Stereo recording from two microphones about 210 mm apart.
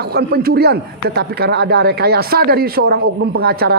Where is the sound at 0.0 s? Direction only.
50° right (ahead or behind).